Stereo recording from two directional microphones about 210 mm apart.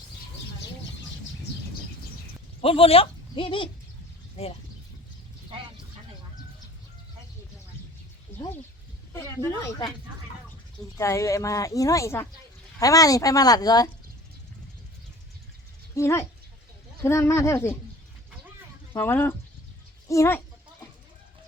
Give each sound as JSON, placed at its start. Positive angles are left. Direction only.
{"t": 2.6, "sound": "speech", "side_deg": 25}
{"t": 8.3, "sound": "a sound", "side_deg": 10}
{"t": 9.1, "sound": "speech", "side_deg": 15}
{"t": 10.9, "sound": "speech", "side_deg": 15}
{"t": 16.0, "sound": "speech", "side_deg": 15}
{"t": 18.9, "sound": "speech", "side_deg": 10}